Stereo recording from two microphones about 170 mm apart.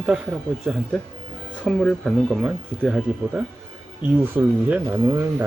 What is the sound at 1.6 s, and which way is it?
Speech, 5° left (ahead or behind).